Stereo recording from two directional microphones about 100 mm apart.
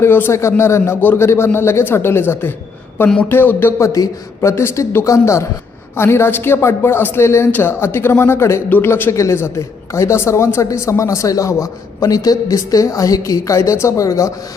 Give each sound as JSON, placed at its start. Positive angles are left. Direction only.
{"t": 0.0, "sound": "speech", "side_deg": 25}